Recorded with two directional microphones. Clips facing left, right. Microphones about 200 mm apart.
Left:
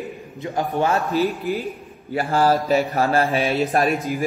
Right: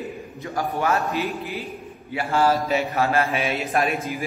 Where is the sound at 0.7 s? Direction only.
30° left (ahead or behind).